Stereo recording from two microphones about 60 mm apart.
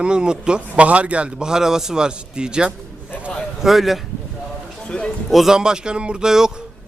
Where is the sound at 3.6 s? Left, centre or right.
Centre.